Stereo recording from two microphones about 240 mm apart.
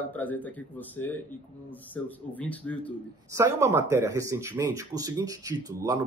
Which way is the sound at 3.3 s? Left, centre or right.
Centre.